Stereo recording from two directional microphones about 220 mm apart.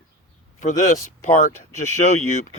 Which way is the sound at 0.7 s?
15° left (ahead or behind).